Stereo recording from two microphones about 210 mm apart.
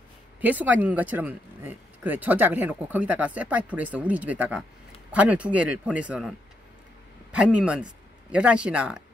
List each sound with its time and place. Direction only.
0.4 s speech: 10° right (ahead or behind)
7.3 s speech: 5° right (ahead or behind)